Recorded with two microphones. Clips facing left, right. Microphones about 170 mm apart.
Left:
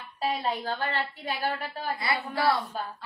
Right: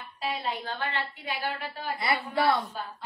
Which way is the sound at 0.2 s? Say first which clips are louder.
Left 3 dB; 40° left (ahead or behind).